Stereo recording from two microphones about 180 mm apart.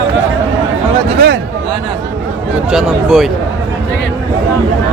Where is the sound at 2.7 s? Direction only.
Centre (ahead or behind).